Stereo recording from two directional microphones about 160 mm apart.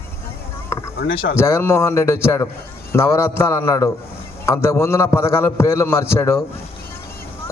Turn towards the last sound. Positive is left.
turn(degrees=15)  # may be behind; listen again after turning